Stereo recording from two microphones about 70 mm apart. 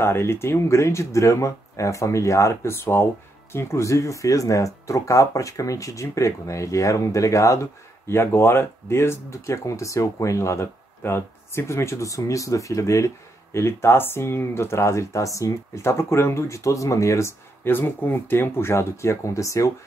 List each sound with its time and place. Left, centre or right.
0.0 s speech: left
8.1 s speech: left